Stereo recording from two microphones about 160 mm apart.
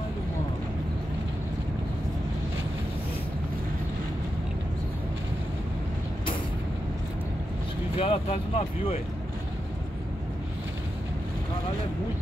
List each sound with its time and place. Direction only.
8.0 s speech: 35° left (ahead or behind)